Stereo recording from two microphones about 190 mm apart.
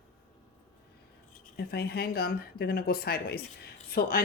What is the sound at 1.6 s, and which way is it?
Speech, 55° left (ahead or behind).